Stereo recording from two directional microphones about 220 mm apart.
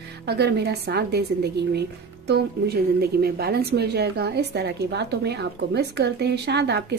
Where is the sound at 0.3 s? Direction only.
50° right (ahead or behind).